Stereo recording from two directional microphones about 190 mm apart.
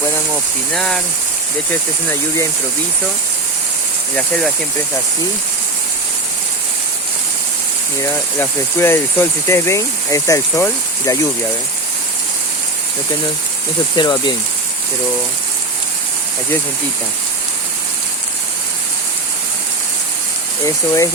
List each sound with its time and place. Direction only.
0.7 s speech: 5° left (ahead or behind)
4.1 s speech: 5° left (ahead or behind)
8.0 s speech: 15° left (ahead or behind)
13.9 s speech: 25° left (ahead or behind)
20.7 s speech: 15° left (ahead or behind)